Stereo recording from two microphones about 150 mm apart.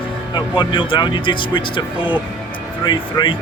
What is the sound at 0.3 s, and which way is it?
Speech, 35° left (ahead or behind).